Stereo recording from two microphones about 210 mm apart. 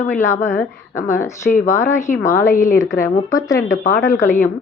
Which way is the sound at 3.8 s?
40° left (ahead or behind).